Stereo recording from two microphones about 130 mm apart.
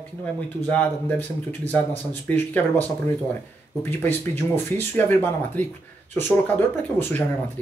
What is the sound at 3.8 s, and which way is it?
Speech, 15° left (ahead or behind).